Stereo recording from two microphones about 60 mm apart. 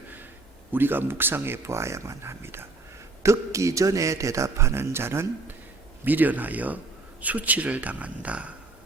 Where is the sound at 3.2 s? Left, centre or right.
Right.